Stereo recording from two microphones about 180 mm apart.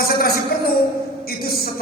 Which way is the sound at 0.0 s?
55° left (ahead or behind).